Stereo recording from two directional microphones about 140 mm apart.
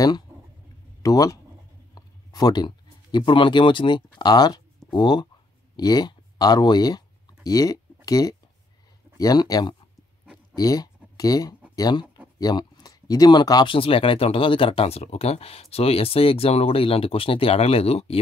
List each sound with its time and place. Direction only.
1.0 s speech: 25° left (ahead or behind)
10.5 s a sound: 25° left (ahead or behind)
11.7 s speech: 30° left (ahead or behind); by 18.1 s 45° left (ahead or behind)